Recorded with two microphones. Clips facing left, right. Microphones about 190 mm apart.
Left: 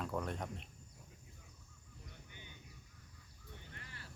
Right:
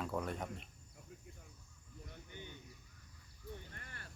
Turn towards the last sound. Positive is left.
turn(degrees=-55)  # may be behind; listen again after turning